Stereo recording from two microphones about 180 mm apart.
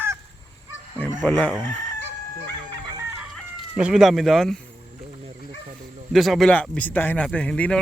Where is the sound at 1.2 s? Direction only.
5° left (ahead or behind).